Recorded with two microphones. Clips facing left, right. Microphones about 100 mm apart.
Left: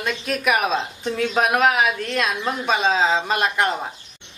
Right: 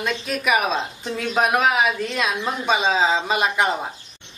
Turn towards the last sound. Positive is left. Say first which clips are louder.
# even
turn(degrees=-5)  # may be behind; listen again after turning